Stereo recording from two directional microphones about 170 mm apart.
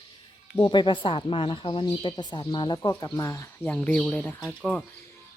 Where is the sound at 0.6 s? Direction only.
25° left (ahead or behind); by 4.8 s 5° left (ahead or behind).